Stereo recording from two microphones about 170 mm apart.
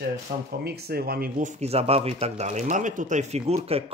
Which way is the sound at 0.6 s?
70° right (ahead or behind).